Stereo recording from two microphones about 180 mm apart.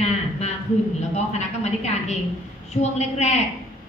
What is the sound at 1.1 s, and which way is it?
A woman's voice, 40° left (ahead or behind).